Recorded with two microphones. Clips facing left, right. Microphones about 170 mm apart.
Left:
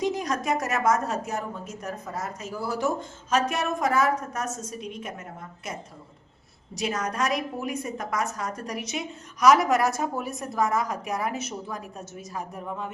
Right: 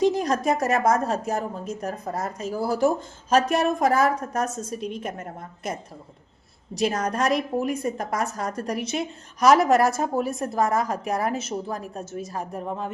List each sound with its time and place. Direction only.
0.0 s a woman's voice: 30° right (ahead or behind)
6.8 s a woman's voice: 30° right (ahead or behind)